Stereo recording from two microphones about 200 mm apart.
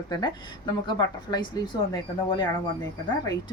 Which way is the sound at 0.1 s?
20° left (ahead or behind).